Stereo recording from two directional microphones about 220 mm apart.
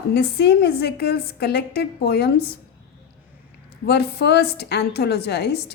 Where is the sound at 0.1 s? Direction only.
45° left (ahead or behind).